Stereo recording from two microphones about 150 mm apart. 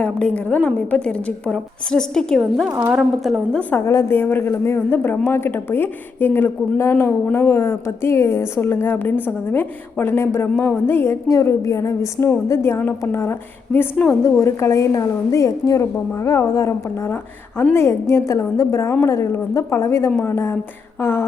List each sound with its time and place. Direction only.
0.0 s a woman's voice: 10° left (ahead or behind)
2.6 s a woman's voice: 20° right (ahead or behind)
2.9 s a woman's voice: 5° right (ahead or behind); by 21.2 s 15° left (ahead or behind)